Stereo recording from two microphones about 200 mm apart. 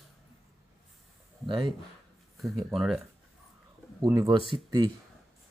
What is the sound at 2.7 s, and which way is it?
Speech, centre (ahead or behind).